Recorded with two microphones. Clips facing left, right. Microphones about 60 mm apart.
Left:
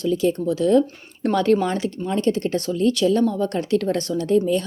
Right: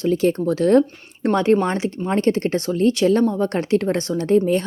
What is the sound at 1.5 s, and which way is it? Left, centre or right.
A woman's voice, right.